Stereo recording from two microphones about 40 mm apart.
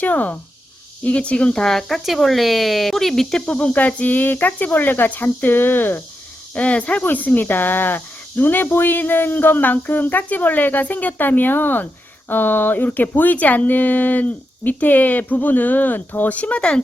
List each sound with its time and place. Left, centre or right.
0.0 s speech: left
1.5 s speech: centre
3.4 s speech: left
6.5 s speech: left
7.0 s speech: left
16.6 s speech: left